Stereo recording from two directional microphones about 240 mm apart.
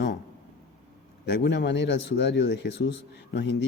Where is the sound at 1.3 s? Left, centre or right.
Left.